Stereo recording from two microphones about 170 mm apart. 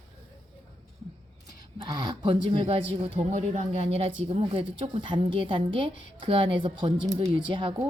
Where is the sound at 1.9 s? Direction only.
25° right (ahead or behind).